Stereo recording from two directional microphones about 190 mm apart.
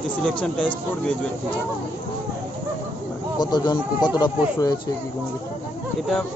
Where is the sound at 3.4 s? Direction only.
20° left (ahead or behind).